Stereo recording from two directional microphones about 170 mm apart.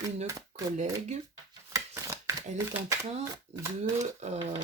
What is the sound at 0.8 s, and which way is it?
Speech, 45° right (ahead or behind).